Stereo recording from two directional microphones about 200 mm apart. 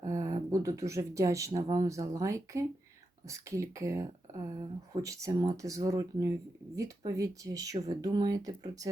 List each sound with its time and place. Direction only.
0.0 s speech: 15° right (ahead or behind)